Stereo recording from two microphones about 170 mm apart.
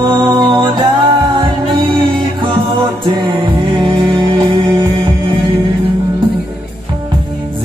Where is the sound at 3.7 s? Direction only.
30° right (ahead or behind).